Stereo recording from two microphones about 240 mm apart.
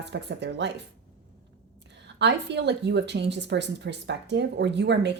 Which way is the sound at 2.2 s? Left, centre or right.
Right.